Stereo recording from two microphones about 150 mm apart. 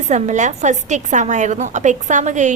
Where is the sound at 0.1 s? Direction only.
55° right (ahead or behind).